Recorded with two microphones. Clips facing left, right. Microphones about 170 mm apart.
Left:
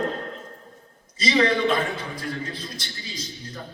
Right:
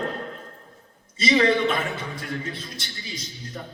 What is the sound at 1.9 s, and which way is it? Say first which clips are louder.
A man's voice: even; 25° right (ahead or behind).